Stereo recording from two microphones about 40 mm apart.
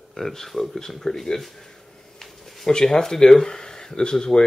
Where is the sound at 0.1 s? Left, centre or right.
Centre.